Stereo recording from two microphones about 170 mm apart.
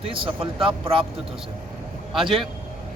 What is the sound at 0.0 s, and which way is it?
Speech, 30° right (ahead or behind).